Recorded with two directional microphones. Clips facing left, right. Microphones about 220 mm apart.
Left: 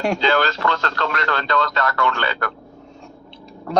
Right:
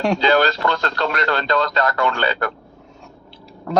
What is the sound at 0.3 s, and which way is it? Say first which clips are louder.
Speech: right 3 dB; 35° right (ahead or behind).